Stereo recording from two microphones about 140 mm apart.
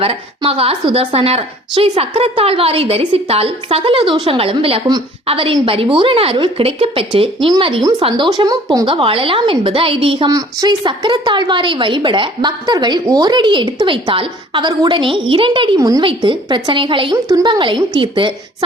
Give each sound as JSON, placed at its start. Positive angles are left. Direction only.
{"t": 0.0, "sound": "a woman's voice", "side_deg": -45}
{"t": 8.9, "sound": "a woman's voice", "side_deg": -40}